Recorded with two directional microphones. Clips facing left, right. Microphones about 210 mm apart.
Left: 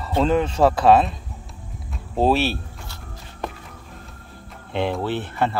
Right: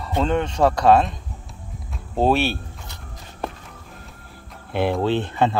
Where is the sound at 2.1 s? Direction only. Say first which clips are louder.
Even; centre (ahead or behind).